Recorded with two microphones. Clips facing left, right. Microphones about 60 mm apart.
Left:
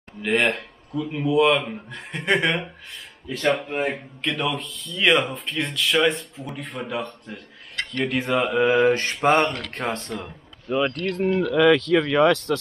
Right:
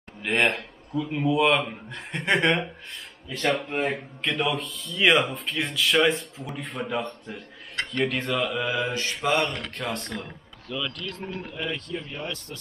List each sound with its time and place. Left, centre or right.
0.2 s a man's voice: centre
8.1 s mantra: centre
8.4 s mantra: left
8.7 s speech: left
11.2 s speech: left